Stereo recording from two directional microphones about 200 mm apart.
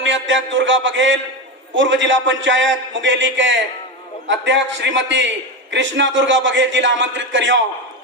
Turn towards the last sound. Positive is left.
turn(degrees=-70)  # may be behind; listen again after turning